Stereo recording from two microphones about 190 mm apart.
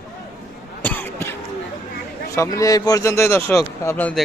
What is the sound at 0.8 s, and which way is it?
Cough, 10° left (ahead or behind).